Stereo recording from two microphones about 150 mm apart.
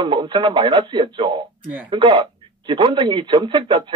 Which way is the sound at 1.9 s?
35° right (ahead or behind).